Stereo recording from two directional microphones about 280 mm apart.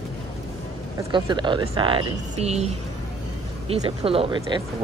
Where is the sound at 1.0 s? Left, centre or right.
Centre.